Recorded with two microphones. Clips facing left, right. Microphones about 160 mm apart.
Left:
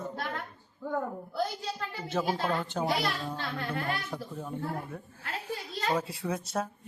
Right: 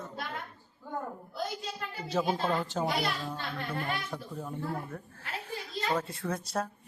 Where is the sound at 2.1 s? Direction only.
Centre (ahead or behind).